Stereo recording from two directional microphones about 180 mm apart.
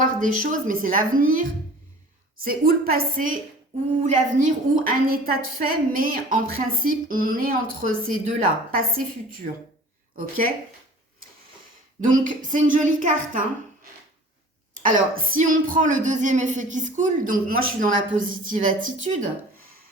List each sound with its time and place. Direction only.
0.0 s a woman's voice: 45° right (ahead or behind)
11.9 s a woman's voice: 45° right (ahead or behind)
14.7 s a woman's voice: 45° right (ahead or behind)